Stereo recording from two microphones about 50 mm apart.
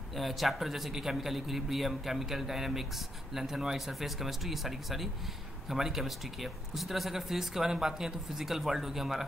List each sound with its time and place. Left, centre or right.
0.1 s a man's voice: centre